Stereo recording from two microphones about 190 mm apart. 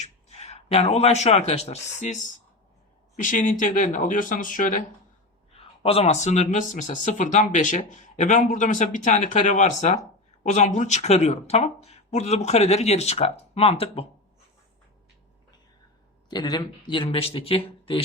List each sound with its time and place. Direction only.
0.0 s a man's voice: 35° left (ahead or behind)
5.8 s speech: 30° left (ahead or behind)
16.3 s speech: 25° left (ahead or behind)